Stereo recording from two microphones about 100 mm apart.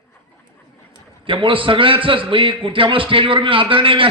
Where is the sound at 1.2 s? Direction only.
60° right (ahead or behind).